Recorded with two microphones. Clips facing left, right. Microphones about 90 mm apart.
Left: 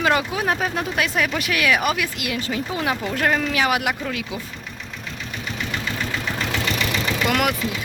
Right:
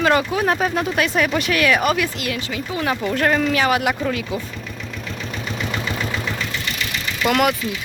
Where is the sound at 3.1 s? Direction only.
Centre (ahead or behind).